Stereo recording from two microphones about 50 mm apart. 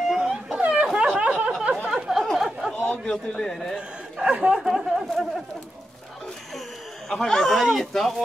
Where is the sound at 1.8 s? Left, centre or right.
Centre.